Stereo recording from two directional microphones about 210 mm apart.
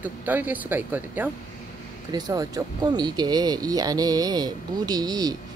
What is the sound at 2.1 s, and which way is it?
Speech, 20° right (ahead or behind).